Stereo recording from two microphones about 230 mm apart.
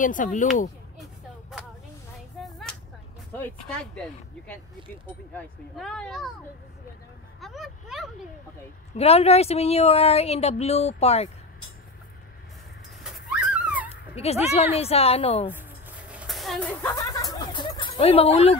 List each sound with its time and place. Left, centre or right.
0.0 s speech: left
2.4 s whip: centre
3.3 s speech: centre
7.3 s speech: centre
8.9 s a woman's voice: left
13.0 s dog: centre
14.1 s a woman's voice: left
15.5 s a sound: centre; by 18.6 s left